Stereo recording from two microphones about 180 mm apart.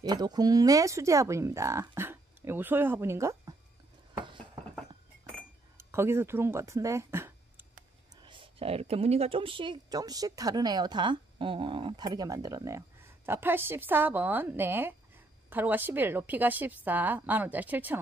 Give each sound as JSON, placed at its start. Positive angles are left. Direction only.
{"t": 0.0, "sound": "speech", "side_deg": -25}
{"t": 5.8, "sound": "speech", "side_deg": -15}
{"t": 8.2, "sound": "speech", "side_deg": -30}